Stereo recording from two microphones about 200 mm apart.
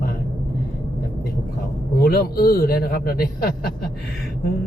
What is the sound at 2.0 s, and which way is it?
Speech, 50° left (ahead or behind).